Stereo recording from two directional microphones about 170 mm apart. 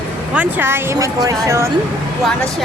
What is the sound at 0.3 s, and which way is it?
A woman's voice, 10° right (ahead or behind).